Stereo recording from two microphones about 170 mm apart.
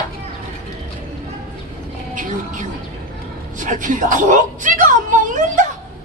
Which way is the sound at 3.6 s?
50° right (ahead or behind).